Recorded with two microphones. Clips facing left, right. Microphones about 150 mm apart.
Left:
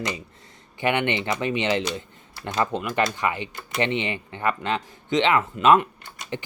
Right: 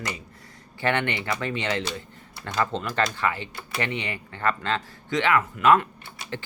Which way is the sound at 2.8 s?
10° left (ahead or behind).